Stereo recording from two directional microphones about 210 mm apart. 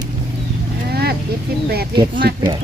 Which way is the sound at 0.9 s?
50° right (ahead or behind).